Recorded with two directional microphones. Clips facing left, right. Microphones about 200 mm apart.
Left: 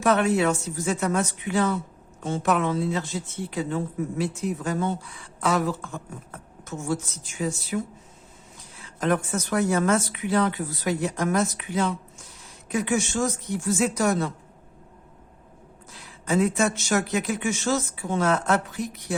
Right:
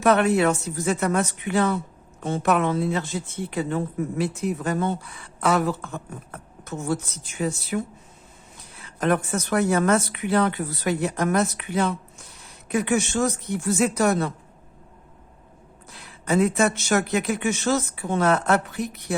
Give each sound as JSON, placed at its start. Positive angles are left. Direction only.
{"t": 0.0, "sound": "speech", "side_deg": -60}
{"t": 15.9, "sound": "speech", "side_deg": -60}